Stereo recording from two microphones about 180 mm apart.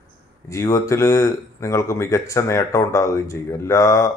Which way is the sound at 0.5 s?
15° left (ahead or behind).